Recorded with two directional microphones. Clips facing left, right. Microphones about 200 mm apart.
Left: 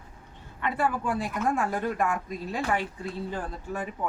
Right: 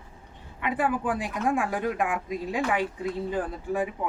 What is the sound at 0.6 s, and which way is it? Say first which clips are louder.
Speech: right 1 dB; 15° right (ahead or behind).